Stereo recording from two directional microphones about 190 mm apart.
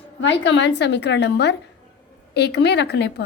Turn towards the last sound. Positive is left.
turn(degrees=60)  # may be behind; listen again after turning